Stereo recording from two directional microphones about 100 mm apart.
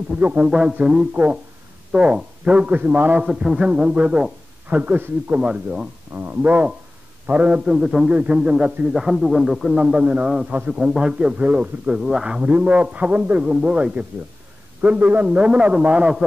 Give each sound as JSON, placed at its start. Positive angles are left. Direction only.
{"t": 0.1, "sound": "a man's voice", "side_deg": -10}
{"t": 3.3, "sound": "a man's voice", "side_deg": -5}